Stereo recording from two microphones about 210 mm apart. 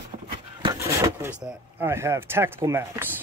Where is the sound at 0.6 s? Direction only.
20° right (ahead or behind).